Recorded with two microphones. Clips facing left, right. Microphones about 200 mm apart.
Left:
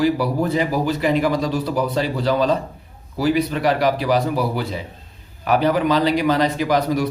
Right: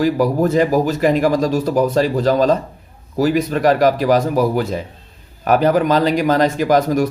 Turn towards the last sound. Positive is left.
turn(degrees=-45)  # may be behind; listen again after turning